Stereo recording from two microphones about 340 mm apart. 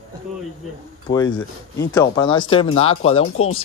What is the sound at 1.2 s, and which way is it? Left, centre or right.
Speech, left.